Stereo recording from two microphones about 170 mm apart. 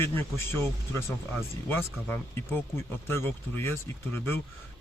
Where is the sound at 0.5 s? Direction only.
15° left (ahead or behind).